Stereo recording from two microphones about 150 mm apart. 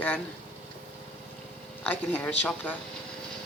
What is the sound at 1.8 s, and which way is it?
Speech, 10° left (ahead or behind).